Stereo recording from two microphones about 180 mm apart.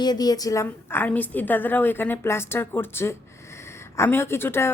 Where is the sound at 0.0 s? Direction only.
20° left (ahead or behind).